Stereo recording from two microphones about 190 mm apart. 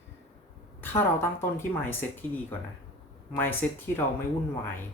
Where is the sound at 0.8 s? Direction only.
10° left (ahead or behind).